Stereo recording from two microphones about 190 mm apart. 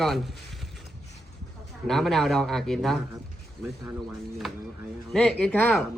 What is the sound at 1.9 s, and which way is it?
Speech, centre (ahead or behind).